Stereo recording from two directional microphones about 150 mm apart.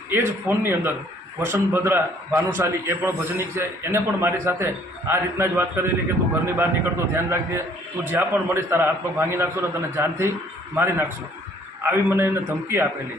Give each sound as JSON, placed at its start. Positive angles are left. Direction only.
{"t": 0.1, "sound": "a man's voice", "side_deg": -15}